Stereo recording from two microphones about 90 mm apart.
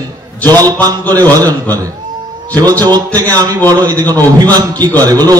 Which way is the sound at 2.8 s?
45° right (ahead or behind).